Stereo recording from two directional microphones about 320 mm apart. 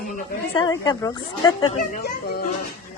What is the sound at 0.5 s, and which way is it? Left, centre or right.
A woman's voice, centre.